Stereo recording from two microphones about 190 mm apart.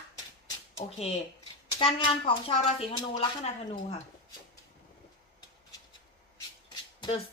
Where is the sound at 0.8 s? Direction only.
30° left (ahead or behind).